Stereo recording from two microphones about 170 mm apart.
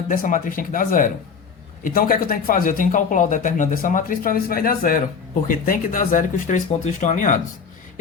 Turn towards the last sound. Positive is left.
turn(degrees=50)  # may be behind; listen again after turning